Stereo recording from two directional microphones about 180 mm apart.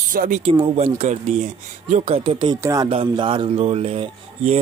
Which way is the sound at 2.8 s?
25° right (ahead or behind).